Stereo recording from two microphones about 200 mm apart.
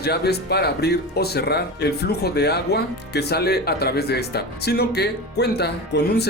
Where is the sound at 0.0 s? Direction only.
55° left (ahead or behind).